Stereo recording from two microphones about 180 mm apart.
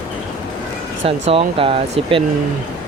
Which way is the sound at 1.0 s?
30° right (ahead or behind).